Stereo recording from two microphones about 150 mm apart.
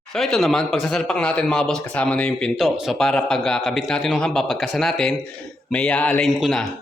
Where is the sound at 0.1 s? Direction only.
5° left (ahead or behind).